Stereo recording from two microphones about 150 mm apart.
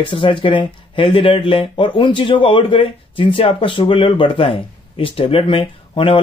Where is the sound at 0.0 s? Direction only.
35° left (ahead or behind).